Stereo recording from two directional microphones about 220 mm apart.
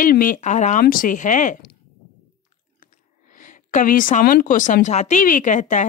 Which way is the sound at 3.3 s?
35° left (ahead or behind).